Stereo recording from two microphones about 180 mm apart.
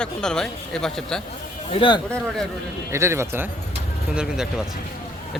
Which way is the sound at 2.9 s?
15° right (ahead or behind).